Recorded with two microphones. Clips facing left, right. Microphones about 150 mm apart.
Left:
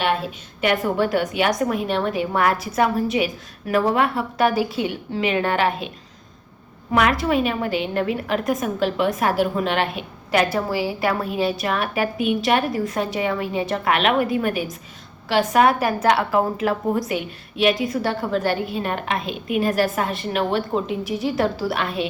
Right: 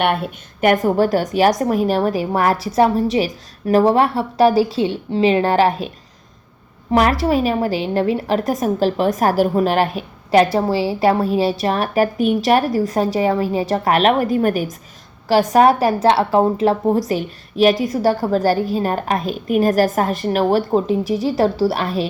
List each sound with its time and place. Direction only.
0.0 s a woman's voice: 60° right (ahead or behind); by 5.9 s 40° right (ahead or behind)
6.9 s a woman's voice: 35° right (ahead or behind)